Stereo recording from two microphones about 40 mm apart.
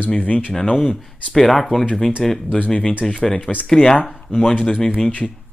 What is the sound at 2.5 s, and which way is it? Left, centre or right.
Speech, left.